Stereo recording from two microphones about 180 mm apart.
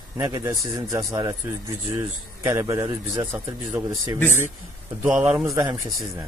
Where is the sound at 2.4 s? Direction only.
15° right (ahead or behind).